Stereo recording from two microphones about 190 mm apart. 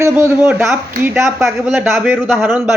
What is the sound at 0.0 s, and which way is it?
A man's voice, 15° right (ahead or behind).